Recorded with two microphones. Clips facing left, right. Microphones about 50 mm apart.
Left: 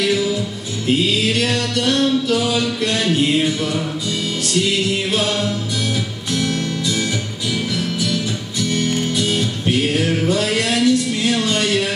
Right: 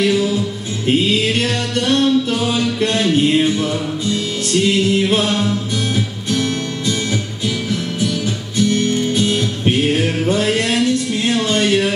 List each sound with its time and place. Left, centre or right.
0.8 s music: right
4.6 s music: right
8.5 s music: right